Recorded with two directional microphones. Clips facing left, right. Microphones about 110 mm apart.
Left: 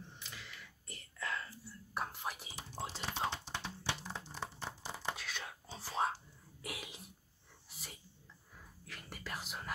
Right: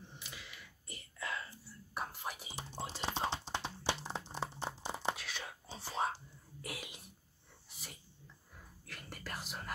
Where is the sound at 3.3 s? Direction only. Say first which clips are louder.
Right 3 dB; 25° right (ahead or behind).